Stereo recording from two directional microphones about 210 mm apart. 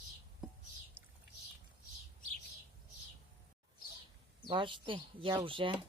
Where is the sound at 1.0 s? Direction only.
10° right (ahead or behind).